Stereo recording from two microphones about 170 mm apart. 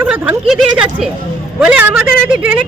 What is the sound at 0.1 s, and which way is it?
A woman's voice, 5° right (ahead or behind).